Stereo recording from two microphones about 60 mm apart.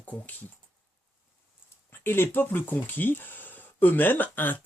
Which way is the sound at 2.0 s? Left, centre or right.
Left.